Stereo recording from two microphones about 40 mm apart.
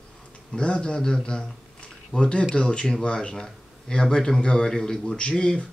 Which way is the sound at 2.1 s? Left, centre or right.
Left.